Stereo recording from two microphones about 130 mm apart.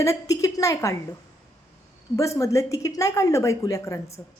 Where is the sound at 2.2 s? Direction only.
25° left (ahead or behind).